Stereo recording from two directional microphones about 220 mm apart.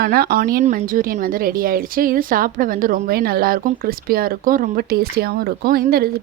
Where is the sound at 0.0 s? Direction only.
45° right (ahead or behind).